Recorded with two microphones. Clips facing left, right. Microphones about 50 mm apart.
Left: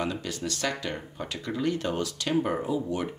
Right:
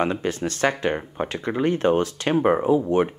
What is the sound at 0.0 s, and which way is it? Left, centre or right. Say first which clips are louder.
Speech: right 8 dB; right.